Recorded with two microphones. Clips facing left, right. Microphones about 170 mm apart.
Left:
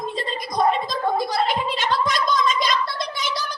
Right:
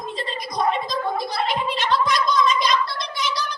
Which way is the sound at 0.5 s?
50° left (ahead or behind).